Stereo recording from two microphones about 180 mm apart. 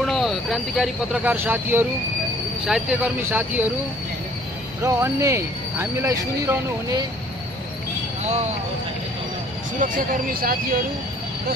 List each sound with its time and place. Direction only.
0.0 s speech: centre (ahead or behind)
4.8 s speech: 15° right (ahead or behind)
8.2 s a sound: 40° right (ahead or behind)
9.8 s speech: 50° right (ahead or behind)